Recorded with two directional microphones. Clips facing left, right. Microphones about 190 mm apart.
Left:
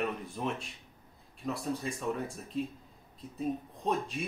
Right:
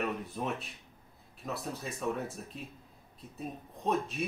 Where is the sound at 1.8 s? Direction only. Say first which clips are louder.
Even; centre (ahead or behind).